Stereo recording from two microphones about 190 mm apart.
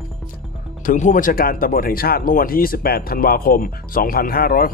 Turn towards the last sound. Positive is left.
turn(degrees=50)  # may be behind; listen again after turning